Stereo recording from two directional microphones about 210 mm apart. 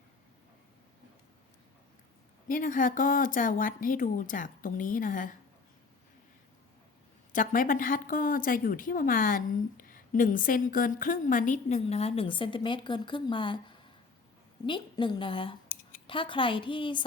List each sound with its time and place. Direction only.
2.5 s a woman's voice: 40° left (ahead or behind)
7.3 s a woman's voice: 40° left (ahead or behind); by 17.1 s 25° left (ahead or behind)